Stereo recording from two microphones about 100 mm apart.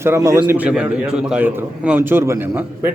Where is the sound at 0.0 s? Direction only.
30° right (ahead or behind).